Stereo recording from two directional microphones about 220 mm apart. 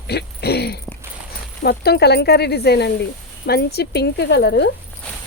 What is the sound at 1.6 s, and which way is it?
A woman's voice, 45° left (ahead or behind).